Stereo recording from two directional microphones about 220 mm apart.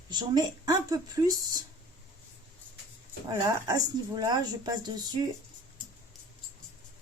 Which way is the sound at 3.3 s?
15° right (ahead or behind).